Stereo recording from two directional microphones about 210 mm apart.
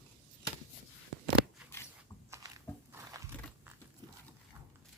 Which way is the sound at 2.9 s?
10° right (ahead or behind).